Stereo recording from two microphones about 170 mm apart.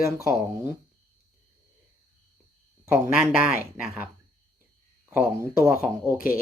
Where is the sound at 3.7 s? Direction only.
10° right (ahead or behind).